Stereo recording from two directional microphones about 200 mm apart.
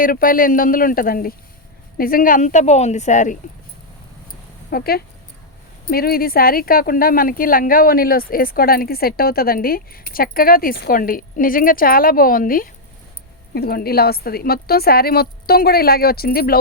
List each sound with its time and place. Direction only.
0.0 s a woman's voice: 45° left (ahead or behind)
4.7 s speech: 50° left (ahead or behind)